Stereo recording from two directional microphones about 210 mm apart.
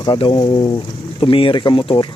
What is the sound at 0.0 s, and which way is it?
Speech, 25° left (ahead or behind).